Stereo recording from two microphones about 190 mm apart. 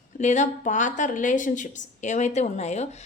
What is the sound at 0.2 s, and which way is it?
A woman's voice, 40° left (ahead or behind).